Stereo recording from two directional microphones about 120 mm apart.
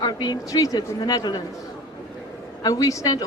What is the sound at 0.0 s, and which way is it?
A woman's voice, 35° left (ahead or behind).